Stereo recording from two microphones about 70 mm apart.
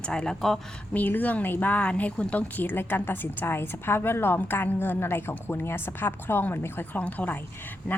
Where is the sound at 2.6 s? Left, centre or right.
Left.